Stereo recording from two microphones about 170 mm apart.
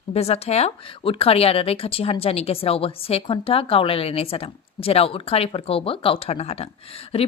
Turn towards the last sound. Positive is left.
turn(degrees=35)  # may be behind; listen again after turning